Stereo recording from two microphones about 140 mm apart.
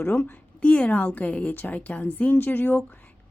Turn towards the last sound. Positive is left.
turn(degrees=10)  # may be behind; listen again after turning